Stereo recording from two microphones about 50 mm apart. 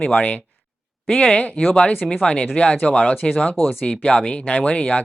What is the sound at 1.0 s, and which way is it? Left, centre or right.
Speech, centre.